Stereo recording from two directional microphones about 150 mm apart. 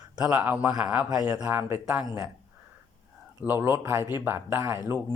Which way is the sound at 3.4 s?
15° right (ahead or behind).